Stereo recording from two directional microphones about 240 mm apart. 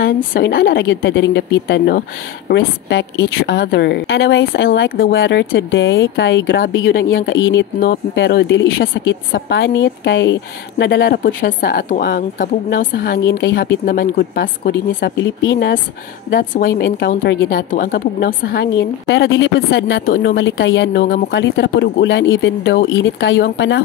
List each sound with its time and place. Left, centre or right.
0.0 s speech: left